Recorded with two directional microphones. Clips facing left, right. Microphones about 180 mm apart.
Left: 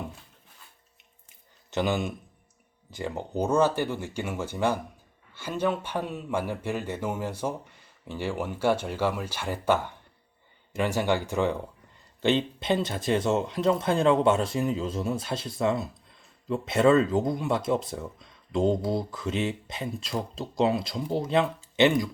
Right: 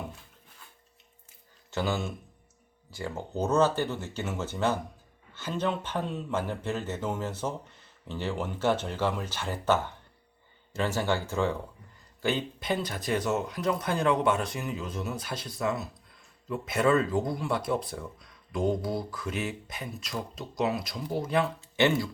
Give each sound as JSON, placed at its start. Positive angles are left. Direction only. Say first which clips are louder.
{"t": 1.7, "sound": "speech", "louder": "left 3 dB", "side_deg": 20}